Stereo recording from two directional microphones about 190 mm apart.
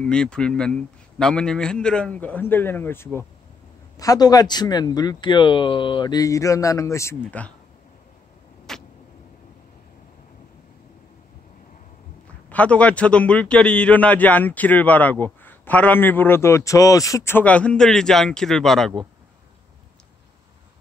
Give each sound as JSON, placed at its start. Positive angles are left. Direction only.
{"t": 0.0, "sound": "a man's voice", "side_deg": 5}
{"t": 8.7, "sound": "vehicle", "side_deg": 0}
{"t": 12.4, "sound": "a man's voice", "side_deg": 5}